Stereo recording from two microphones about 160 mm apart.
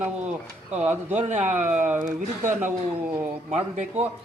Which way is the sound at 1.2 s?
50° right (ahead or behind).